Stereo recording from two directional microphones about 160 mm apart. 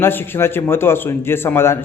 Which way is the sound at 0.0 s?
15° left (ahead or behind).